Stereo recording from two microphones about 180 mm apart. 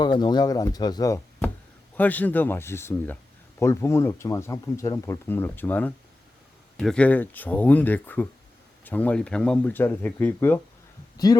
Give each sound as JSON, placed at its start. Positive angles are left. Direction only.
{"t": 0.0, "sound": "speech", "side_deg": 25}
{"t": 11.3, "sound": "speech", "side_deg": 20}